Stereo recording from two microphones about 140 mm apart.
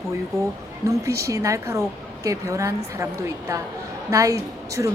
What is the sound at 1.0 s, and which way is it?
Speech, 20° right (ahead or behind).